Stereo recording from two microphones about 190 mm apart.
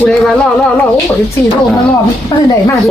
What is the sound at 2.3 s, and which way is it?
Speech, 25° left (ahead or behind).